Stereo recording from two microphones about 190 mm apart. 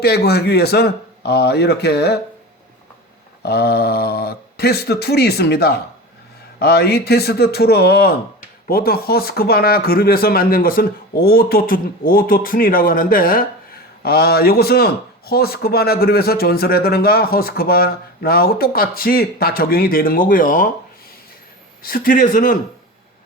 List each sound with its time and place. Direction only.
0.0 s speech: 55° left (ahead or behind)
3.4 s a man's voice: 55° left (ahead or behind)
21.8 s a man's voice: 50° left (ahead or behind)